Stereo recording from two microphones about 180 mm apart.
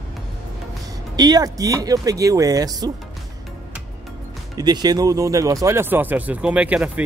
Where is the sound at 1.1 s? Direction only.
20° right (ahead or behind).